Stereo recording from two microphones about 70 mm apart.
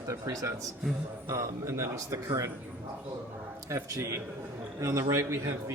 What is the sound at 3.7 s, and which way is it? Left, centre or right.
Speech, right.